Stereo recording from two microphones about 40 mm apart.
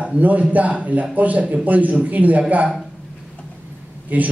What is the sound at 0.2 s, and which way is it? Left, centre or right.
A man's voice, right.